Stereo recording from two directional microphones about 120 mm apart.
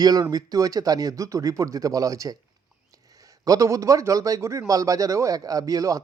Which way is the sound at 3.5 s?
25° right (ahead or behind).